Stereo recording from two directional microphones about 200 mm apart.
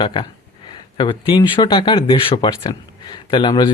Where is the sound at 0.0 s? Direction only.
25° left (ahead or behind).